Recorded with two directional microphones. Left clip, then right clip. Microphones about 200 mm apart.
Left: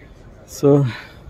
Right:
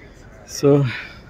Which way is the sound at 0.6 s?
10° left (ahead or behind).